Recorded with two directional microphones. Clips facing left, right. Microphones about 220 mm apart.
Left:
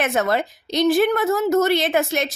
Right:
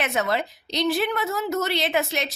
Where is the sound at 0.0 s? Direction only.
50° left (ahead or behind).